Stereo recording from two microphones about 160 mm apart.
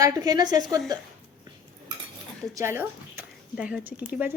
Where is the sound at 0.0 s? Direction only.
20° right (ahead or behind).